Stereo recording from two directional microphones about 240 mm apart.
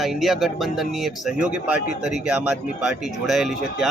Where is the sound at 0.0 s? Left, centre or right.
Centre.